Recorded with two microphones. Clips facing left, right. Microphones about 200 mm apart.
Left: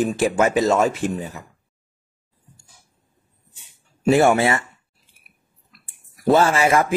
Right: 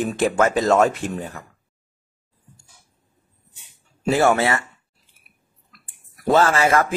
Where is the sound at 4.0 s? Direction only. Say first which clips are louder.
Left 2 dB; 20° left (ahead or behind).